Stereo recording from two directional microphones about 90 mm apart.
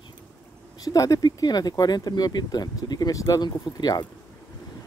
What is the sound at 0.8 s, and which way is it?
Speech, 40° left (ahead or behind).